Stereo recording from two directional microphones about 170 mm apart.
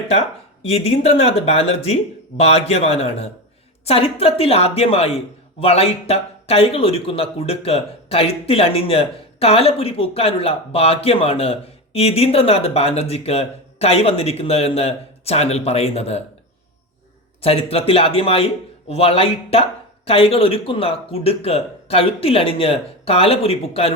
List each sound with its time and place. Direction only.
0.1 s speech: 40° left (ahead or behind)
17.4 s speech: 35° left (ahead or behind)